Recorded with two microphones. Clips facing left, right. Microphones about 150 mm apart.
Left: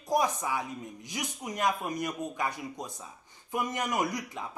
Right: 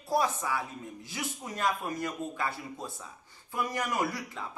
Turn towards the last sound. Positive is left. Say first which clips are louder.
# left 2 dB
turn(degrees=15)  # may be behind; listen again after turning